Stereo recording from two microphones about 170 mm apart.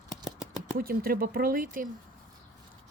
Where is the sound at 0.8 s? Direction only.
60° right (ahead or behind).